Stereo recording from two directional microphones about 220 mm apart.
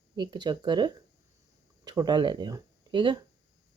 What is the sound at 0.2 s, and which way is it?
Speech, 20° right (ahead or behind).